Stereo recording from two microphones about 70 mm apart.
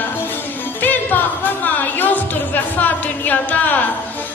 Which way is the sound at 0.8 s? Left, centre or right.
Left.